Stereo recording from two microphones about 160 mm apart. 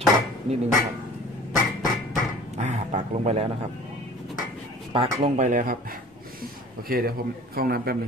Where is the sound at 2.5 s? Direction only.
45° right (ahead or behind).